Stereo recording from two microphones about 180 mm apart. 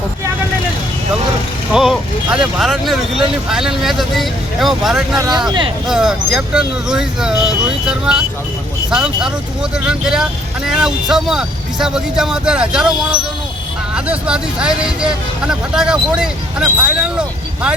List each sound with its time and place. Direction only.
1.7 s vehicle: 5° right (ahead or behind)
3.5 s speech: 5° right (ahead or behind)
5.1 s speech: 20° right (ahead or behind)
5.9 s speech: 5° right (ahead or behind)